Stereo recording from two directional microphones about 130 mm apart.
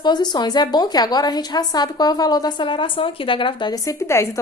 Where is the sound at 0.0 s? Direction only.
35° left (ahead or behind).